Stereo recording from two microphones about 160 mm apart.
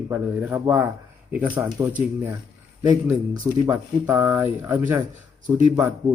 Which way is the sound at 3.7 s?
15° right (ahead or behind).